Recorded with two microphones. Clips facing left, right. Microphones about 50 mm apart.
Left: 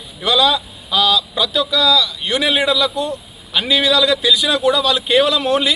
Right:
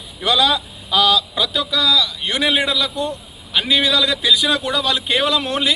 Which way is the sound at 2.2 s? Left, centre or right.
Right.